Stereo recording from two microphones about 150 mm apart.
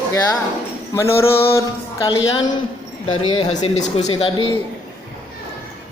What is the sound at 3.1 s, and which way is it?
Speech, 35° left (ahead or behind).